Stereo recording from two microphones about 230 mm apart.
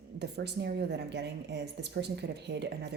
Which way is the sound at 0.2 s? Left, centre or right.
Right.